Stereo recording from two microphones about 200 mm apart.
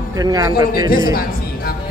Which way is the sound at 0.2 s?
20° right (ahead or behind).